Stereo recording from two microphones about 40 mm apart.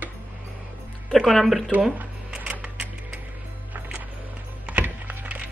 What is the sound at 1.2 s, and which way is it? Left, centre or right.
Speech, centre.